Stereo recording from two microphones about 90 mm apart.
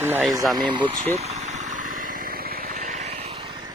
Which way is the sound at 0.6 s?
60° right (ahead or behind).